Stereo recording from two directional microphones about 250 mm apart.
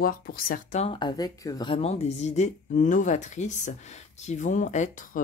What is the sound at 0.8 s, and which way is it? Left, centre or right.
Speech, centre.